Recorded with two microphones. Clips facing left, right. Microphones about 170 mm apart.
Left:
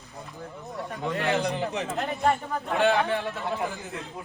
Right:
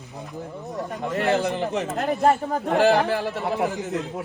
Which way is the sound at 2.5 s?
35° right (ahead or behind).